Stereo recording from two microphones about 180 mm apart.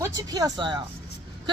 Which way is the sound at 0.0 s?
20° right (ahead or behind).